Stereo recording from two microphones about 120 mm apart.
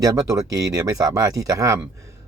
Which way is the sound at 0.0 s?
30° right (ahead or behind).